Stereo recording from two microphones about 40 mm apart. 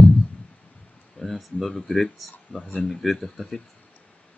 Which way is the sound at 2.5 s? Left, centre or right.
Left.